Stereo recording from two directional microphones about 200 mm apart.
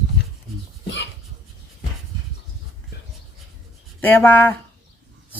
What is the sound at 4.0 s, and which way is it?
Speech, 10° left (ahead or behind).